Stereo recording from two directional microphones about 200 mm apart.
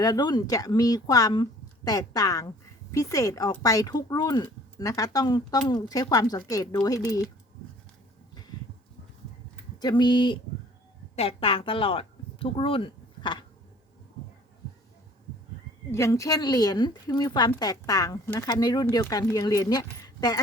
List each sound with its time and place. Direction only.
0.0 s speech: 20° left (ahead or behind)
9.8 s a woman's voice: 20° left (ahead or behind)
15.9 s speech: 15° left (ahead or behind)